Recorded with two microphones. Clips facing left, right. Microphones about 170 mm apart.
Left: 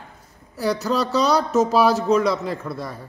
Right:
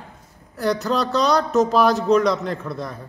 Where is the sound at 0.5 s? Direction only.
5° left (ahead or behind).